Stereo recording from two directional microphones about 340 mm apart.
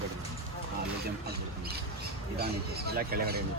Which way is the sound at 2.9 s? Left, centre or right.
Right.